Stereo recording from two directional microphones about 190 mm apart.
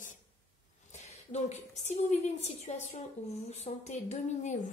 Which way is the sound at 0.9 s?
35° left (ahead or behind).